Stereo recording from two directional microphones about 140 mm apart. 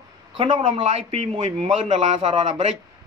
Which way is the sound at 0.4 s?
50° right (ahead or behind).